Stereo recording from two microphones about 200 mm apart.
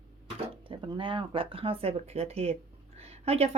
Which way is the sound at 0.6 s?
25° right (ahead or behind).